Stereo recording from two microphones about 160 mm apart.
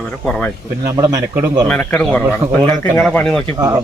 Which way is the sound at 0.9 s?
20° right (ahead or behind).